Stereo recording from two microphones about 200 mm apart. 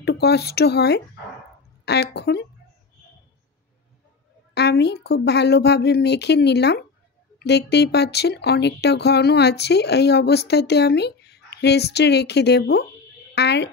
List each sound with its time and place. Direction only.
0.0 s speech: 55° left (ahead or behind)
4.6 s speech: 55° left (ahead or behind)